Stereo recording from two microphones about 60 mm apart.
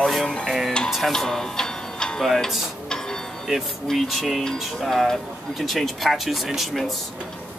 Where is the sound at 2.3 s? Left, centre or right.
Centre.